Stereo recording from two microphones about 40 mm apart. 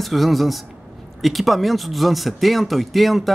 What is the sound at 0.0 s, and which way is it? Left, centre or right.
Speech, centre.